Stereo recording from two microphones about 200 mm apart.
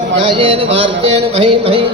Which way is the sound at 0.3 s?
30° right (ahead or behind).